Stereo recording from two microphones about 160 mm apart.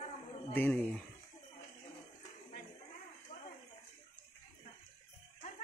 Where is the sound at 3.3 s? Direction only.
40° left (ahead or behind).